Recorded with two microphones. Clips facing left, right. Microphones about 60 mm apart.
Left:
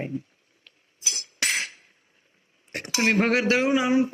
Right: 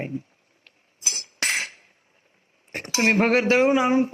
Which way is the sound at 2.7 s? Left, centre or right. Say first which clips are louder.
Right 2 dB; right.